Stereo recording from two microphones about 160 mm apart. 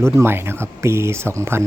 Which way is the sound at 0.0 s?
15° right (ahead or behind).